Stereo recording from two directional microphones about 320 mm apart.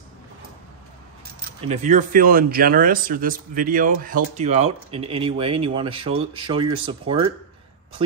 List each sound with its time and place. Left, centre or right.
1.7 s speech: right